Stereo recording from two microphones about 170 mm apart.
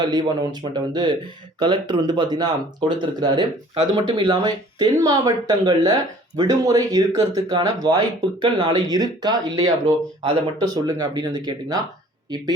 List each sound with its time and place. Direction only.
0.0 s speech: 25° right (ahead or behind)